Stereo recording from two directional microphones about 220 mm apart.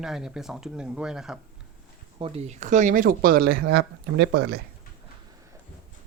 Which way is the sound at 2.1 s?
25° right (ahead or behind).